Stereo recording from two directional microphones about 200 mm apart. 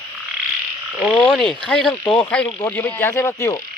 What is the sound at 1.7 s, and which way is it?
Speech, 5° left (ahead or behind).